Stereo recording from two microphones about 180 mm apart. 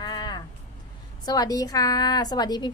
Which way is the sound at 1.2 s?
20° left (ahead or behind).